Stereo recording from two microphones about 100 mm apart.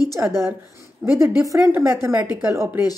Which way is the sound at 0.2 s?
25° right (ahead or behind).